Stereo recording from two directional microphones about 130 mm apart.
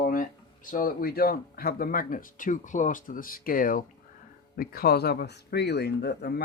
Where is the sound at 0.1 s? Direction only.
90° left.